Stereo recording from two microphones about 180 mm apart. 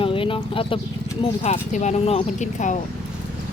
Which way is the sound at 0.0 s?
30° left (ahead or behind).